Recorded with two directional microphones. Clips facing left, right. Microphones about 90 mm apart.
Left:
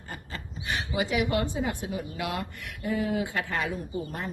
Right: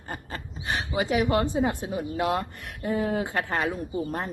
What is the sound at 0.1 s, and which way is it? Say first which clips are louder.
Speech: right 4 dB; 40° right (ahead or behind).